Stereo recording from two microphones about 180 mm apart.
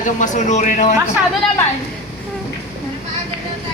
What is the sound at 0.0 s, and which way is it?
Speech, 45° left (ahead or behind).